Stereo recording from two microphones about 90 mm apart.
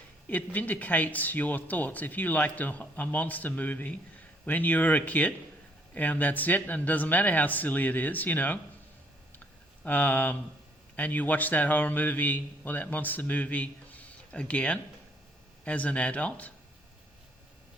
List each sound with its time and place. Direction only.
0.3 s a man's voice: 20° left (ahead or behind)
9.8 s a man's voice: 20° left (ahead or behind)